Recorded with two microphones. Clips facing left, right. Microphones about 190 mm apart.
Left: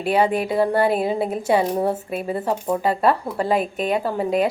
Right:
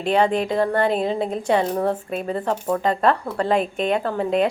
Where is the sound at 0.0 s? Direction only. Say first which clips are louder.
Even; 10° left (ahead or behind).